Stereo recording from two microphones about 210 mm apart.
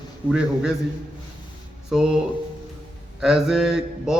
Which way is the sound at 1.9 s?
Centre (ahead or behind).